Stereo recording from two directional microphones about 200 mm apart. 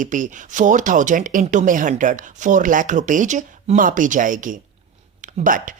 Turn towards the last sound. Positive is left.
turn(degrees=-40)  # may be behind; listen again after turning